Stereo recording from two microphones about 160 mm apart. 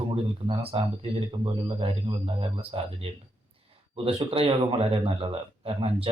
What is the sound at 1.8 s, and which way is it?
A man's voice, 35° right (ahead or behind).